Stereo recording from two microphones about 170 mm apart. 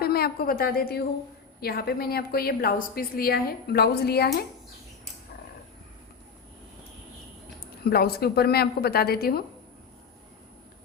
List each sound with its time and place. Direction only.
0.0 s a woman's voice: 65° left (ahead or behind)
7.9 s a woman's voice: 65° left (ahead or behind)